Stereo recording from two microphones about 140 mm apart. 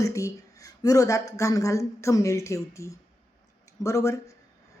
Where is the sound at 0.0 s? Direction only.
20° left (ahead or behind).